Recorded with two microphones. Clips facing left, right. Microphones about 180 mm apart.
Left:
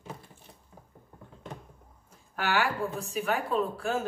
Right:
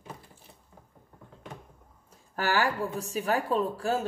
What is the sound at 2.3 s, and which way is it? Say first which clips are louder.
A woman's voice: right 1 dB; 40° right (ahead or behind).